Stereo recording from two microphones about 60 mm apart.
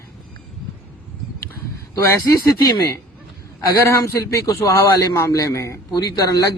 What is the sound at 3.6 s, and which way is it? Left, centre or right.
A man's voice, left.